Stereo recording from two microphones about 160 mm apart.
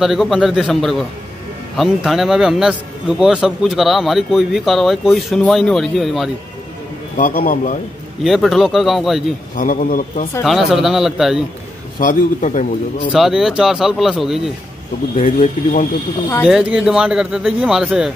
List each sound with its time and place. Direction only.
0.0 s a man's voice: centre (ahead or behind)
7.2 s speech: 60° left (ahead or behind)
8.2 s a man's voice: centre (ahead or behind)
9.6 s speech: 55° left (ahead or behind)
10.4 s a man's voice: centre (ahead or behind)
12.0 s a man's voice: 55° left (ahead or behind)
13.1 s a man's voice: 5° right (ahead or behind)
15.1 s speech: 55° left (ahead or behind)
16.4 s a man's voice: 5° right (ahead or behind)